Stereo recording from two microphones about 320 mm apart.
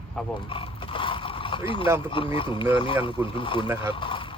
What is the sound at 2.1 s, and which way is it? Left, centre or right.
Speech, centre.